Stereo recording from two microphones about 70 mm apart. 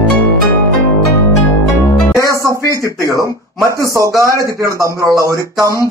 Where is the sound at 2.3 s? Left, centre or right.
Right.